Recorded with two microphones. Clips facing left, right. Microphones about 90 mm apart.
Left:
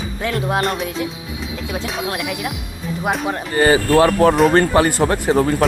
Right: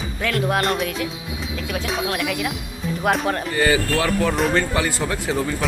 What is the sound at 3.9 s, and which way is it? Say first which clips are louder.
Speech: left 8 dB; 50° left (ahead or behind).